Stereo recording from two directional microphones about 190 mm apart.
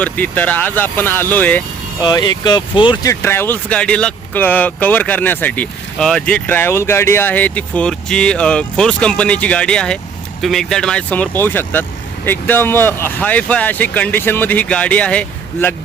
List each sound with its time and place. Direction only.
0.0 s speech: 10° left (ahead or behind)
2.0 s speech: 20° left (ahead or behind); by 15.7 s 5° left (ahead or behind)